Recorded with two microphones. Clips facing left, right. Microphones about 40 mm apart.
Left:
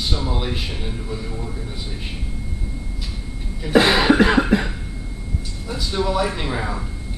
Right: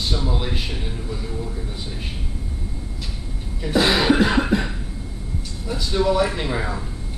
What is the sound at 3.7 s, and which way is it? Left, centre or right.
Cough, left.